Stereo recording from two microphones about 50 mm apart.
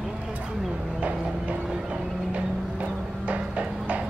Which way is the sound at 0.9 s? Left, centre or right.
Right.